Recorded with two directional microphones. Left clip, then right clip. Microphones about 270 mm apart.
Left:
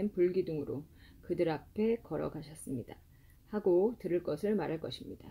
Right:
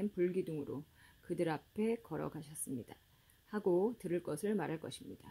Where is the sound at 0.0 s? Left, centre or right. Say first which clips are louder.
Left 5 dB; right.